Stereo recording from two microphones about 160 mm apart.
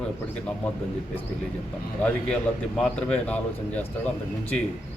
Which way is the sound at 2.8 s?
5° left (ahead or behind).